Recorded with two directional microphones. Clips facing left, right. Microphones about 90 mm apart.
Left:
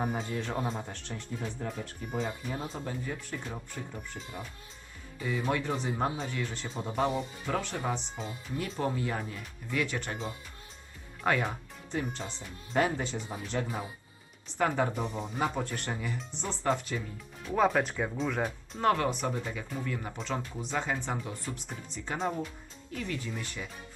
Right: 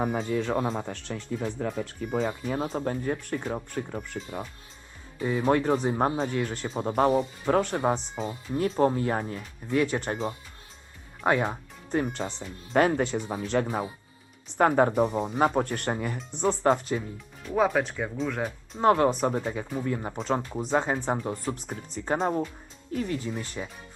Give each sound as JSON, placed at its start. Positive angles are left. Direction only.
{"t": 0.0, "sound": "speech", "side_deg": -90}
{"t": 2.7, "sound": "speech", "side_deg": -50}
{"t": 5.2, "sound": "speech", "side_deg": -40}
{"t": 11.9, "sound": "speech", "side_deg": -50}
{"t": 12.7, "sound": "speech", "side_deg": -65}
{"t": 14.6, "sound": "speech", "side_deg": -45}
{"t": 17.5, "sound": "speech", "side_deg": -5}
{"t": 18.8, "sound": "speech", "side_deg": -30}